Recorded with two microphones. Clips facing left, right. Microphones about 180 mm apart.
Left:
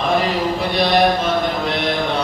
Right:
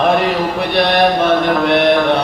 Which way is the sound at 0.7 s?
65° right (ahead or behind).